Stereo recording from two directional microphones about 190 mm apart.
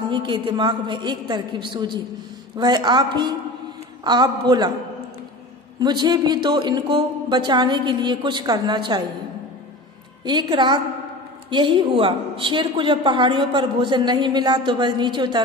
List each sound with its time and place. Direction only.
0.1 s a woman's voice: 25° right (ahead or behind)
5.8 s a woman's voice: 20° right (ahead or behind)
10.2 s a woman's voice: 25° right (ahead or behind)